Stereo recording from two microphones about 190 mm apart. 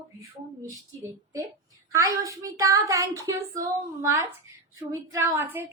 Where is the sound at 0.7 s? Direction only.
15° right (ahead or behind).